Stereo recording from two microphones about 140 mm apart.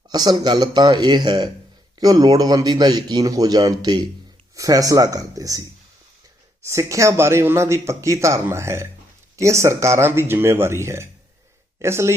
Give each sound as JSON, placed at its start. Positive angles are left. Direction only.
{"t": 0.1, "sound": "speech", "side_deg": -30}